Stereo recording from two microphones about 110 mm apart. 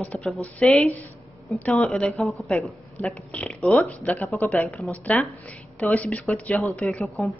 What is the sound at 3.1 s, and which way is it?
A woman's voice, 10° left (ahead or behind).